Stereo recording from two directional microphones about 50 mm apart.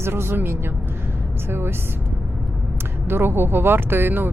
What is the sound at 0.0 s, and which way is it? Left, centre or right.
Speech, right.